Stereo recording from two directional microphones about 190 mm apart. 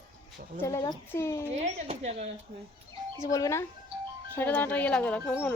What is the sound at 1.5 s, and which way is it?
Speech, 35° right (ahead or behind).